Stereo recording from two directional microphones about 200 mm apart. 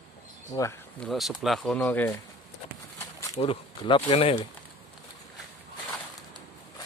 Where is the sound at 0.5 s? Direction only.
20° left (ahead or behind).